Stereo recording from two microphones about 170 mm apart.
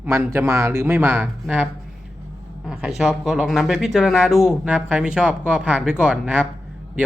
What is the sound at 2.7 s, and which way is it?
A man's voice, 5° right (ahead or behind).